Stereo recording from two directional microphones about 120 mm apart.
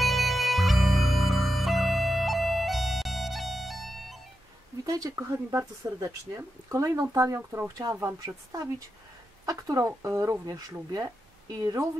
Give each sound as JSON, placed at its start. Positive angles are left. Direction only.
{"t": 0.0, "sound": "music", "side_deg": 0}
{"t": 4.8, "sound": "speech", "side_deg": -30}